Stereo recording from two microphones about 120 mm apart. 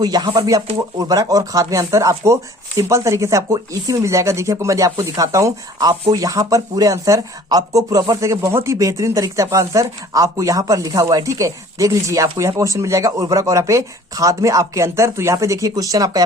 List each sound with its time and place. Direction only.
0.0 s speech: 35° right (ahead or behind)